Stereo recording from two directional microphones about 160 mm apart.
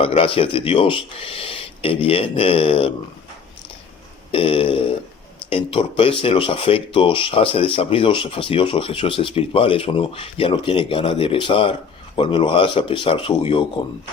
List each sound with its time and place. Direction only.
0.0 s speech: 35° left (ahead or behind)
4.3 s speech: 35° left (ahead or behind)